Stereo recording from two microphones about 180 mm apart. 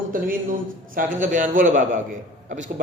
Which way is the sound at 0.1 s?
50° right (ahead or behind).